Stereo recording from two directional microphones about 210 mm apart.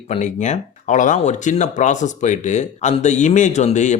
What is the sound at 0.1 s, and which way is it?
Speech, 35° left (ahead or behind).